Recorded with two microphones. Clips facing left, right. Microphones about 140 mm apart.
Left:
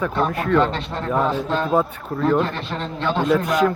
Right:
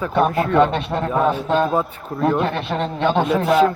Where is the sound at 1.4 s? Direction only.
60° right (ahead or behind).